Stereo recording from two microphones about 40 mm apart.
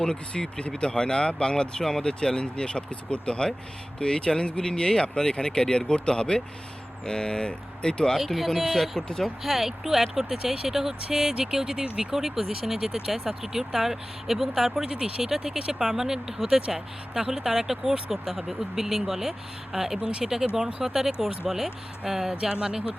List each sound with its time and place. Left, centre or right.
0.0 s speech: left
8.2 s speech: centre
9.0 s speech: centre
9.4 s speech: centre
14.8 s speech: right
15.2 s speech: centre
20.0 s speech: right
20.2 s speech: centre